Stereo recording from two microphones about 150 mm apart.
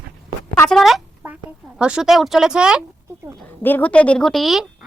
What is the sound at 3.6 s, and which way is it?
Speech, 10° left (ahead or behind).